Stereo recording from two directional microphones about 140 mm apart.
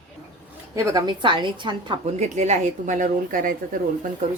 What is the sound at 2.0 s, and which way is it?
Speech, 55° right (ahead or behind).